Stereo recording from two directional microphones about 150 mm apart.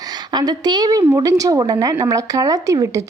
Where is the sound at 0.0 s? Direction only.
30° right (ahead or behind).